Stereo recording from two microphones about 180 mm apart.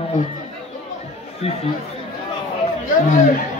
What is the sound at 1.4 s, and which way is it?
Speech, 35° left (ahead or behind).